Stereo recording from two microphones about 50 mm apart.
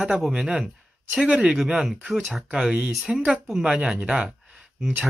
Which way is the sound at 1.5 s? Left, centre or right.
Centre.